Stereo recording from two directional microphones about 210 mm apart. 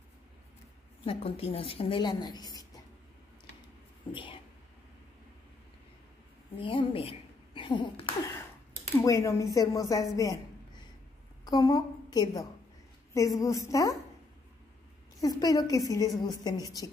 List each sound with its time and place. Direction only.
1.0 s a woman's voice: 25° left (ahead or behind)
4.1 s a sound: 25° left (ahead or behind)
6.6 s a woman's voice: 25° left (ahead or behind)
15.1 s a woman's voice: 15° left (ahead or behind)